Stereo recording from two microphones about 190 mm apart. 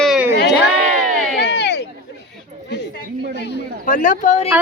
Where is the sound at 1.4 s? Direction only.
60° left (ahead or behind).